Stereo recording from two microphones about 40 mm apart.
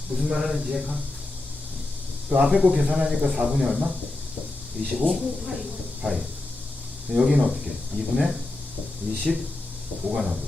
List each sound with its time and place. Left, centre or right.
0.1 s speech: centre
2.3 s speech: centre
4.9 s speech: centre
10.0 s speech: right